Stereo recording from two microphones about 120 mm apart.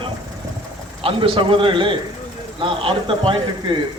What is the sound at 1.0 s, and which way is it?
A man's voice, 45° right (ahead or behind).